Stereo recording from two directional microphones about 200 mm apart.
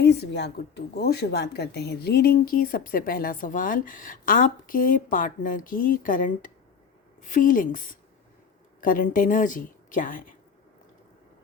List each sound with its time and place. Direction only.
0.0 s speech: 55° left (ahead or behind)